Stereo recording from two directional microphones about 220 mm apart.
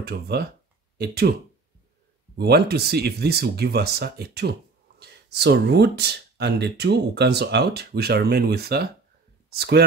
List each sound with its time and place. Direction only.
0.0 s speech: 45° right (ahead or behind)
2.3 s speech: 45° right (ahead or behind)